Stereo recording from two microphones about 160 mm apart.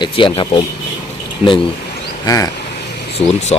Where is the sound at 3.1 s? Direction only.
45° left (ahead or behind).